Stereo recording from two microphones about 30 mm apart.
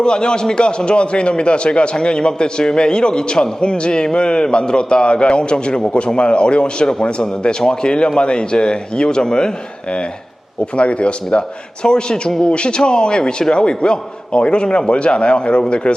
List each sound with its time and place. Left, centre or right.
0.0 s a man's voice: left
10.8 s a man's voice: left